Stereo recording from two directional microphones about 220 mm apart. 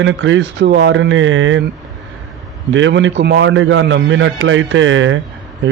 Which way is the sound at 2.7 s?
55° right (ahead or behind).